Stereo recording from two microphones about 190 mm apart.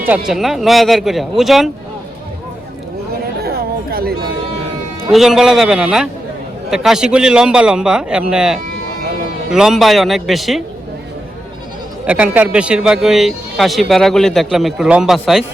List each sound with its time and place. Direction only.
0.0 s speech: 5° right (ahead or behind)
3.4 s chatter: 55° right (ahead or behind)
5.1 s speech: centre (ahead or behind)
12.0 s speech: 5° right (ahead or behind)